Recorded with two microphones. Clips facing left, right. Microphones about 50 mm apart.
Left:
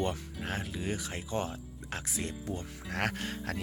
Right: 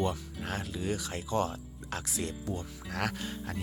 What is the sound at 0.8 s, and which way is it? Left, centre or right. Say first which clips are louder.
Speech: right 2 dB; left.